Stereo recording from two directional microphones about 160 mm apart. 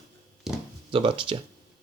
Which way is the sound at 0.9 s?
35° right (ahead or behind).